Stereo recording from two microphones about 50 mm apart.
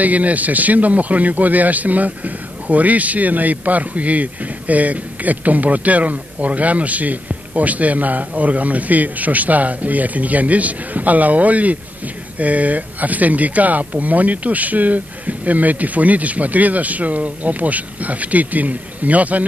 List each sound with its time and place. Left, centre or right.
0.0 s speech: right